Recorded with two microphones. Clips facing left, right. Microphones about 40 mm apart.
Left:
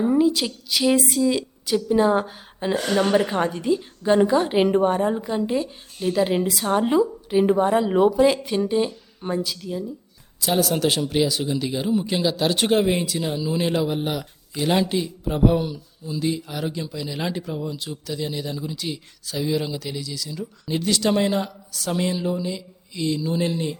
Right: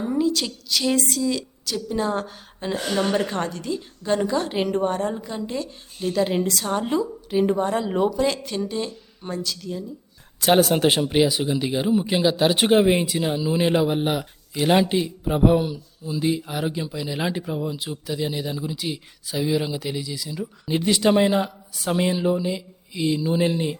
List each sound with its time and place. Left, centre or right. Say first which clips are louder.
0.0 s a woman's voice: left 4 dB; centre
10.4 s speech: right 5 dB; right
10.7 s speech: right 2 dB; right